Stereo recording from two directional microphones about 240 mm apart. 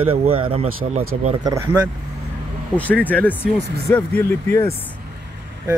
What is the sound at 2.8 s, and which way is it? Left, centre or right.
Speech, centre.